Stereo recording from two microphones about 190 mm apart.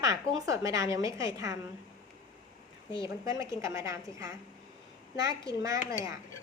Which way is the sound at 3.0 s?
15° right (ahead or behind).